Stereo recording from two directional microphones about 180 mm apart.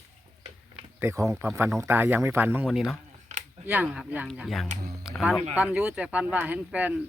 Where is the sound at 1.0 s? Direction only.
15° right (ahead or behind).